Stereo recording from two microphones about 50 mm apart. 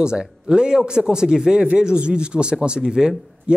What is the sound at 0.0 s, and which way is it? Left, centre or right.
Speech, centre.